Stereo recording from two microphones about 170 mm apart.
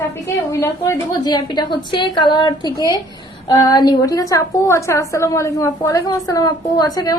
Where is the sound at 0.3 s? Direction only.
20° left (ahead or behind).